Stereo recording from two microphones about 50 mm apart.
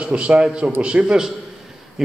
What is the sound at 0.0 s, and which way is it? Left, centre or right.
A man's voice, right.